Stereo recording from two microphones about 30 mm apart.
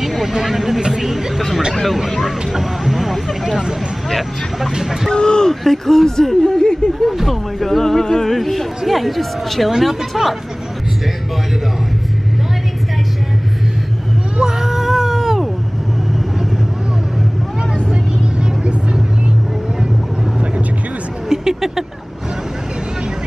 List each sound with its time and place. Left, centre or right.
0.0 s a sound: centre
0.3 s a woman's voice: centre
0.7 s vehicle: right
2.0 s speech: centre
2.5 s vehicle: centre
5.1 s speech: left
5.5 s speech: centre
6.9 s speech: centre
7.8 s a woman's voice: centre
14.4 s a sound: centre
21.3 s vehicle: centre